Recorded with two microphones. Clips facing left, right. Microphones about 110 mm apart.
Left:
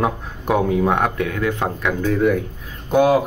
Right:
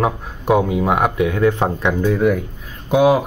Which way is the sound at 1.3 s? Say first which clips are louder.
Right 5 dB; 25° right (ahead or behind).